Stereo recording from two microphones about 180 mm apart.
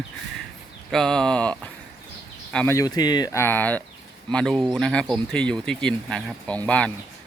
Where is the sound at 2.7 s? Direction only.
20° left (ahead or behind).